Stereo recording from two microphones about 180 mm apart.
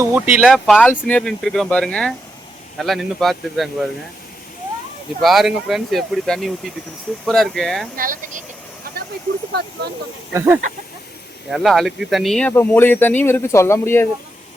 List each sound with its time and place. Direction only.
0.0 s speech: 10° right (ahead or behind)
5.2 s speech: centre (ahead or behind)
7.9 s speech: 50° right (ahead or behind)
10.3 s speech: 10° right (ahead or behind)
11.5 s speech: centre (ahead or behind)